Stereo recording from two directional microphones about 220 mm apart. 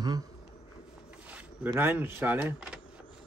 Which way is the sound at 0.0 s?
15° right (ahead or behind).